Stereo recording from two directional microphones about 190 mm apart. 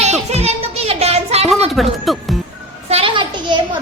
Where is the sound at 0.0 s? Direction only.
35° right (ahead or behind).